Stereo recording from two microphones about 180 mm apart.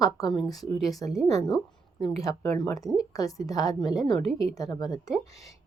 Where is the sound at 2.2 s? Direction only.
20° left (ahead or behind).